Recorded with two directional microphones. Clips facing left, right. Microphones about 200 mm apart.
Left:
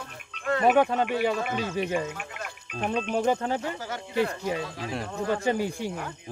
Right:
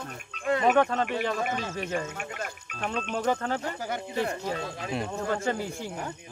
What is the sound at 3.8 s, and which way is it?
Speech, 15° right (ahead or behind).